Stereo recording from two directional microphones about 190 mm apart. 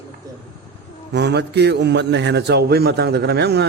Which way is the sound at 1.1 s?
65° right (ahead or behind).